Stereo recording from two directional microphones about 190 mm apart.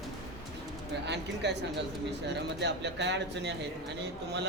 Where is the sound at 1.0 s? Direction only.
65° right (ahead or behind).